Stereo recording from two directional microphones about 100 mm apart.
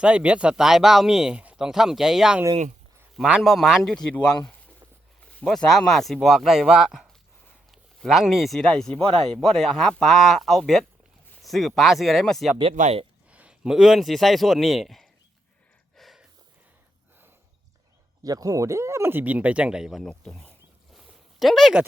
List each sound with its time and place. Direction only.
0.0 s speech: 10° right (ahead or behind)
3.4 s speech: centre (ahead or behind)
12.6 s speech: 75° right (ahead or behind)
13.3 s a man's voice: 10° right (ahead or behind)
16.0 s a sound: centre (ahead or behind)
18.2 s speech: 40° right (ahead or behind); by 20.5 s 5° left (ahead or behind)
20.9 s a sound: centre (ahead or behind)